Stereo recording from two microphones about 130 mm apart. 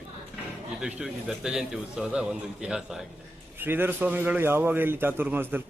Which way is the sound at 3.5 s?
15° right (ahead or behind).